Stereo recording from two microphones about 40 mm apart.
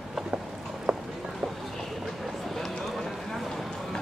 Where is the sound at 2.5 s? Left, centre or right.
Centre.